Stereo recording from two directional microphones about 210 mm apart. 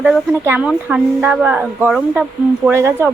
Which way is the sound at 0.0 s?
5° right (ahead or behind).